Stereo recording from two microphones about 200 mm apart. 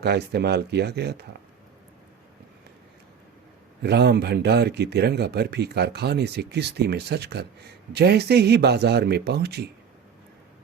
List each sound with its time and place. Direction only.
0.0 s speech: 55° right (ahead or behind)
3.8 s speech: 55° right (ahead or behind)